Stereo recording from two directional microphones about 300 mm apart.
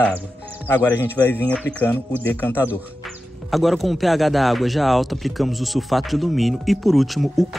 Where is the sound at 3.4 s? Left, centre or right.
Centre.